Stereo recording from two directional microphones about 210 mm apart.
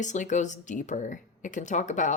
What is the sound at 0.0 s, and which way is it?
Speech, 35° left (ahead or behind).